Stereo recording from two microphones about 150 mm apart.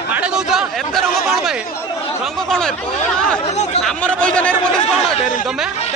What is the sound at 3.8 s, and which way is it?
Speech, 5° left (ahead or behind).